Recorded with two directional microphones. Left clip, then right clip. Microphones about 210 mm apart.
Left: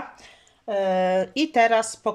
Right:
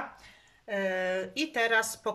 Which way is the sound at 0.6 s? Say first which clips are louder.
Left 8 dB; 25° left (ahead or behind).